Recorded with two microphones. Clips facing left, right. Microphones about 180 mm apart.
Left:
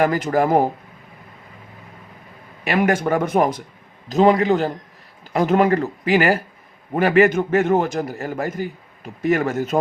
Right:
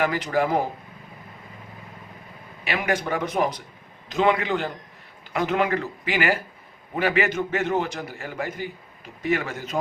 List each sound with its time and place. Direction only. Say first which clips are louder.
0.0 s a man's voice: left 5 dB; 45° left (ahead or behind)
2.6 s a man's voice: left 7 dB; 45° left (ahead or behind)
4.1 s a man's voice: left 7 dB; 40° left (ahead or behind)